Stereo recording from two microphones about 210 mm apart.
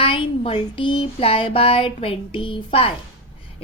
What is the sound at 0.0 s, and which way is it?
Music, 25° left (ahead or behind).